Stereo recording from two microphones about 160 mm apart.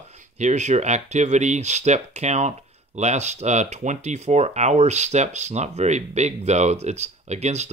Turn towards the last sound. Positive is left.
turn(degrees=-45)  # may be behind; listen again after turning